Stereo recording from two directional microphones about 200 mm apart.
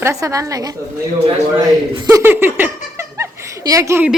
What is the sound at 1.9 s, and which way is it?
Laughter, 15° right (ahead or behind).